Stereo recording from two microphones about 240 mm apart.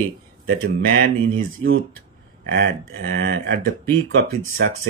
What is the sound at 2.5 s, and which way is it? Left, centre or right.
Speech, right.